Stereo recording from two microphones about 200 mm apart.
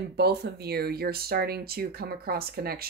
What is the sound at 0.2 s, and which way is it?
Speech, 55° right (ahead or behind).